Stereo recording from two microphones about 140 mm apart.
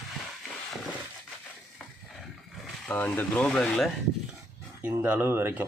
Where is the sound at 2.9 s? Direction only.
10° left (ahead or behind).